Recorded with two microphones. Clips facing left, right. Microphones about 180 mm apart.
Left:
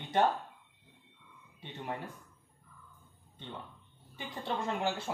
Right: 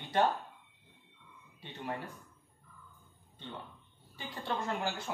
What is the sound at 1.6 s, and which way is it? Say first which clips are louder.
Speech: even; 20° left (ahead or behind).